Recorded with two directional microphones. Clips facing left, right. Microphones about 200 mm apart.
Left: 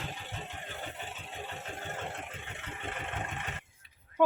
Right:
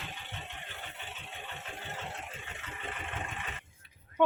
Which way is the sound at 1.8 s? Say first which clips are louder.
Left 2 dB; 50° left (ahead or behind).